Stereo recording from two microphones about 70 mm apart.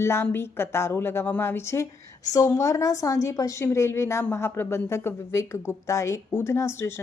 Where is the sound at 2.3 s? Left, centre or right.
Left.